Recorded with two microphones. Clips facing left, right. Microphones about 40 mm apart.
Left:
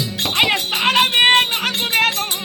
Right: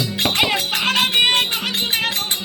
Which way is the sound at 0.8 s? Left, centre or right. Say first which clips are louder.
Left 4 dB; left.